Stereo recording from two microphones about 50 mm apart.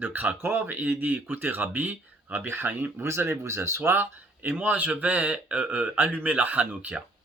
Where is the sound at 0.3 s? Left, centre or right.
Right.